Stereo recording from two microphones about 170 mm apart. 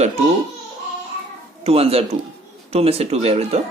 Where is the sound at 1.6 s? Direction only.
35° right (ahead or behind).